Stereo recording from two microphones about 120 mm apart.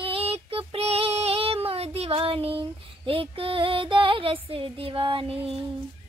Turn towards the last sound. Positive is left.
turn(degrees=-50)  # may be behind; listen again after turning